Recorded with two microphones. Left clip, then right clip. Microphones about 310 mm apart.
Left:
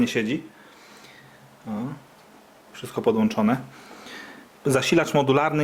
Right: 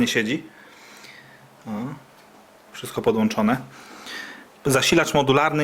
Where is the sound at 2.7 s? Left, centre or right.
Centre.